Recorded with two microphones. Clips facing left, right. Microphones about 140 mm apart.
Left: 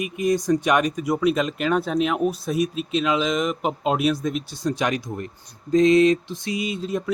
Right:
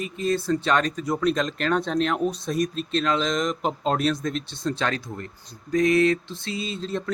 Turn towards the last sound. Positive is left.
turn(degrees=10)  # may be behind; listen again after turning